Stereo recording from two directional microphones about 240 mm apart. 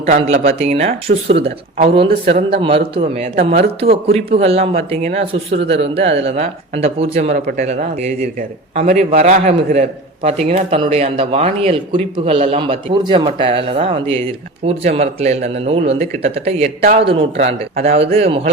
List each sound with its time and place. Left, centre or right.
0.0 s speech: right
17.1 s speech: right